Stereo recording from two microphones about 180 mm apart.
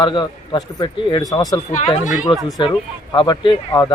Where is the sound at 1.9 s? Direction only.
45° left (ahead or behind).